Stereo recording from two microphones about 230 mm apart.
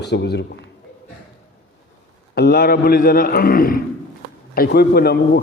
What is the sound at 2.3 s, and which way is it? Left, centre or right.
A man's voice, left.